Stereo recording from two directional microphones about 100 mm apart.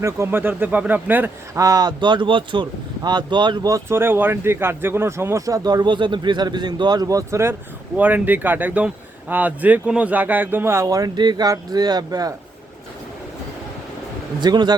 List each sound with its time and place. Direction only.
0.0 s speech: 25° right (ahead or behind)
1.5 s speech: 35° right (ahead or behind)
3.8 s speech: 25° right (ahead or behind)
5.6 s speech: 45° right (ahead or behind); by 7.5 s 30° right (ahead or behind)
7.9 s speech: 15° right (ahead or behind)
10.8 s speech: 40° right (ahead or behind)
14.4 s speech: 45° right (ahead or behind)